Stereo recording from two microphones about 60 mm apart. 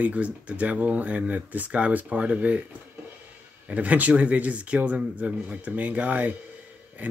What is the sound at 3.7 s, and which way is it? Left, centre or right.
Speech, right.